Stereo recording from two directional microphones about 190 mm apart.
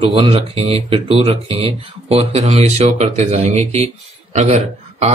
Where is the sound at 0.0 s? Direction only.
30° right (ahead or behind).